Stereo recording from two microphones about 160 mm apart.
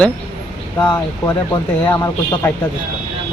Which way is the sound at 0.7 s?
20° left (ahead or behind).